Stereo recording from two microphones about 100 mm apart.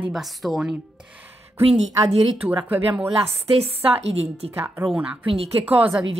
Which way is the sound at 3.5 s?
80° right.